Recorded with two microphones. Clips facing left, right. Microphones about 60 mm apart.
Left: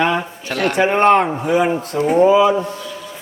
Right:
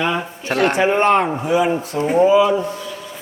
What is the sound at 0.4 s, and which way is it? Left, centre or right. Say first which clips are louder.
Speech: right 4 dB; right.